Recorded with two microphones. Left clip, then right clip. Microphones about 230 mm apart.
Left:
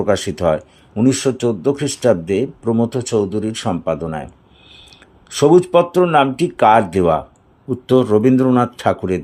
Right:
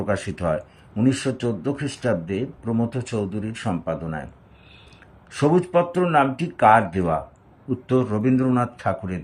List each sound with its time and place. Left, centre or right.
0.0 s speech: left
5.4 s speech: left